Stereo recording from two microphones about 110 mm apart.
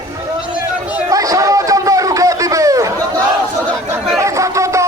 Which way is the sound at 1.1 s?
30° right (ahead or behind).